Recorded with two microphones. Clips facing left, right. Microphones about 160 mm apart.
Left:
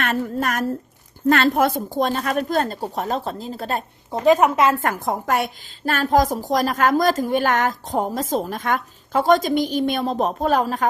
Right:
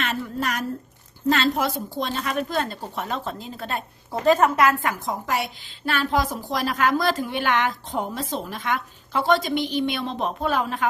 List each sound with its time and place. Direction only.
0.0 s a woman's voice: 50° left (ahead or behind)
4.1 s a woman's voice: 15° left (ahead or behind)
4.8 s a woman's voice: 50° left (ahead or behind)